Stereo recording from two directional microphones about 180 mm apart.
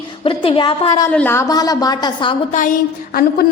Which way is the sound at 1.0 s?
10° left (ahead or behind).